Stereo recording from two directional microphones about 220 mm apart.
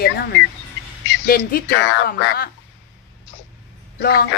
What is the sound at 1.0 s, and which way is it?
Speech, 50° left (ahead or behind).